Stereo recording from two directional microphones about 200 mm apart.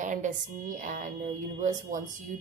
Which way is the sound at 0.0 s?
40° right (ahead or behind).